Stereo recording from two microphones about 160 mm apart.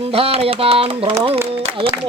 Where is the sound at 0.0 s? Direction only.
40° right (ahead or behind).